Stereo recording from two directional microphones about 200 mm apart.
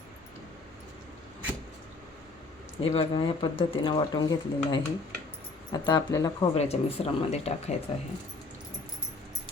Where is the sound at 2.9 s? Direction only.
25° left (ahead or behind).